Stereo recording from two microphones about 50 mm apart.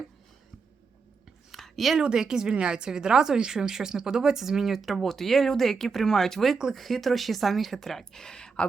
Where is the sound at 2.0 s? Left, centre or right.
Centre.